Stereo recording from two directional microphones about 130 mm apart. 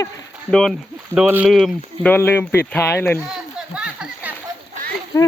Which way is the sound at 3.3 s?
5° right (ahead or behind).